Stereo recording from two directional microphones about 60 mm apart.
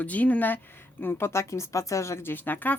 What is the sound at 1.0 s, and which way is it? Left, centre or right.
Speech, left.